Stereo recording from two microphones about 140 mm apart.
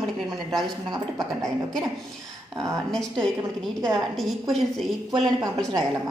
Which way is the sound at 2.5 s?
25° right (ahead or behind).